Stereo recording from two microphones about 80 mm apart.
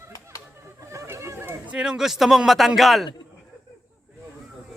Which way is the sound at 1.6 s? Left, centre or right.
Centre.